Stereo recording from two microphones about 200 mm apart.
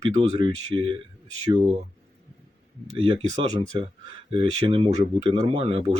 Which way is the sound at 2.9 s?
25° right (ahead or behind).